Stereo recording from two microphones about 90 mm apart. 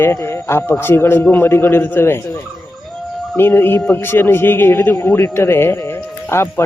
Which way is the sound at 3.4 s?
25° left (ahead or behind).